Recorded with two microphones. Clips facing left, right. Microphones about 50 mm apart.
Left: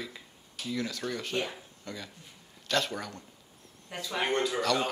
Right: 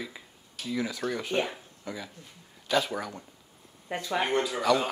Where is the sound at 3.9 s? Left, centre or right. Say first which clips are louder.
Right 5 dB; right.